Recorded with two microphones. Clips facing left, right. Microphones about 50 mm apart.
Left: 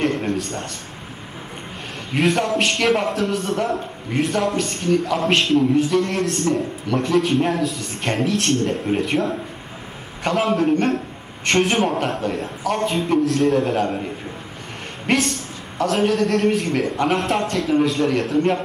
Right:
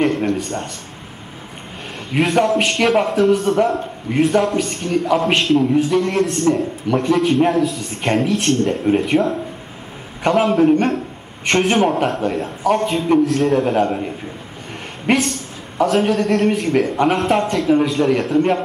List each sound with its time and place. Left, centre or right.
0.0 s a sound: centre
2.1 s a man's voice: centre
15.1 s a man's voice: centre